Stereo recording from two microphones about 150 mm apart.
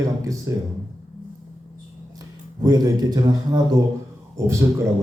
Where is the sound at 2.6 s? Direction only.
25° right (ahead or behind).